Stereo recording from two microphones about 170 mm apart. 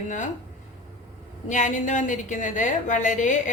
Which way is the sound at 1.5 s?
50° left (ahead or behind).